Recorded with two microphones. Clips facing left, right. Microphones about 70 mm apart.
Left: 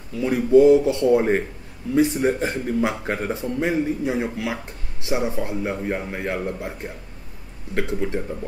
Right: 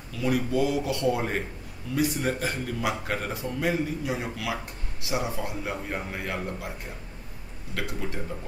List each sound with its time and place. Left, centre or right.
0.2 s speech: left
7.7 s speech: left